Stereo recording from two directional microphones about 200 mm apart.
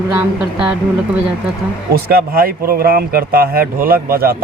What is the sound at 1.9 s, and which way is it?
Speech, 50° right (ahead or behind).